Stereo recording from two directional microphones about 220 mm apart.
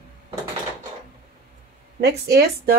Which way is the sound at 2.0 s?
45° right (ahead or behind).